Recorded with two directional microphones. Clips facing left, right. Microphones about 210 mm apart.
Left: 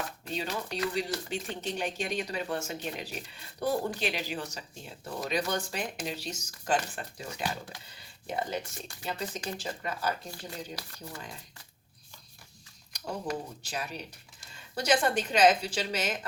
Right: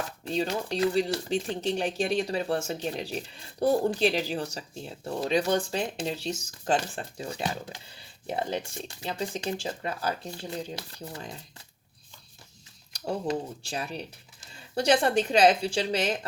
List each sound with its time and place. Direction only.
0.3 s speech: 30° right (ahead or behind)
12.9 s speech: 30° right (ahead or behind)